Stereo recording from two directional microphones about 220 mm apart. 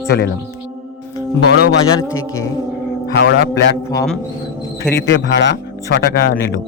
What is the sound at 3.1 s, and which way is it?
Speech, 50° left (ahead or behind).